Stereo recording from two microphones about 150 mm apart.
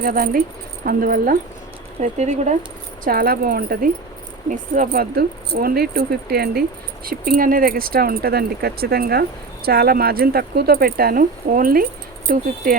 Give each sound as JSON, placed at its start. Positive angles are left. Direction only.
{"t": 0.0, "sound": "speech", "side_deg": -75}
{"t": 2.0, "sound": "speech", "side_deg": -50}
{"t": 3.0, "sound": "speech", "side_deg": -70}